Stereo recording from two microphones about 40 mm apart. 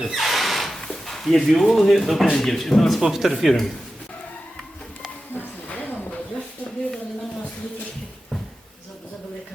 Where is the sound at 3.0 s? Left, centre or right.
Centre.